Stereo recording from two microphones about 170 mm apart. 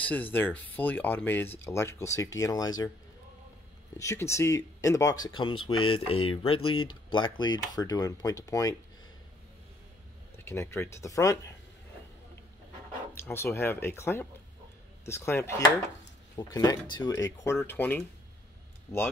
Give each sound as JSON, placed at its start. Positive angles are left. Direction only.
{"t": 0.0, "sound": "speech", "side_deg": 10}
{"t": 4.0, "sound": "speech", "side_deg": 15}
{"t": 10.3, "sound": "speech", "side_deg": 15}
{"t": 13.1, "sound": "speech", "side_deg": 15}